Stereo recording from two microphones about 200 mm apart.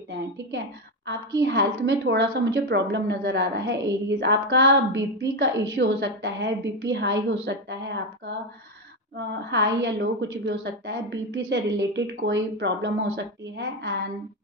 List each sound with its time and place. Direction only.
1.4 s a woman's voice: 60° right (ahead or behind)
9.5 s a woman's voice: 60° right (ahead or behind)